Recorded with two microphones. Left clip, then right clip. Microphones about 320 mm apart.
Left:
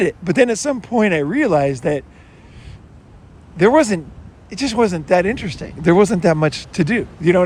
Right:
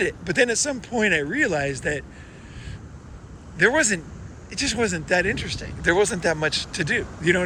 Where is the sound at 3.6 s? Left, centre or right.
Centre.